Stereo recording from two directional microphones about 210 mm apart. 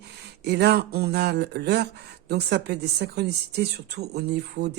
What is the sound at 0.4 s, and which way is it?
Speech, 50° right (ahead or behind).